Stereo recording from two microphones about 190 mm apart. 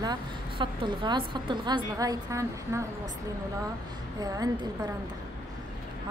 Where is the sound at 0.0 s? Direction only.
20° right (ahead or behind).